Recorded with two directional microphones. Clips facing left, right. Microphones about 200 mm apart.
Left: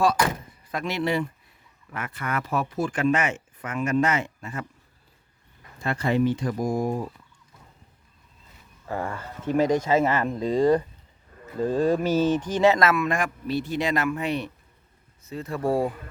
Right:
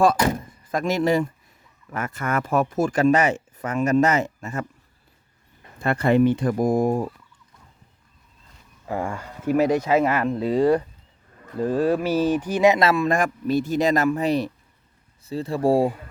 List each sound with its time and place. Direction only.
0.7 s speech: 45° right (ahead or behind)
5.8 s speech: 55° right (ahead or behind)
8.9 s speech: 15° right (ahead or behind)
12.8 s speech: 30° right (ahead or behind)